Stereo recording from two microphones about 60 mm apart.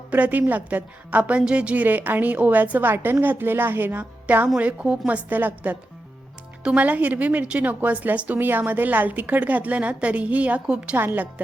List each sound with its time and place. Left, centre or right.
0.1 s a woman's voice: right
10.9 s a woman's voice: right